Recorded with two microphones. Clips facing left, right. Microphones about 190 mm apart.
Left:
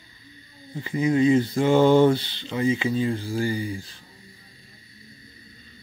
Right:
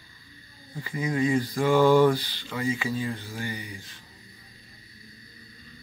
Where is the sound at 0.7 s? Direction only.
25° left (ahead or behind).